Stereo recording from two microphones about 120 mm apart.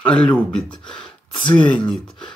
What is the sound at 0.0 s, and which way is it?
Speech, 10° left (ahead or behind).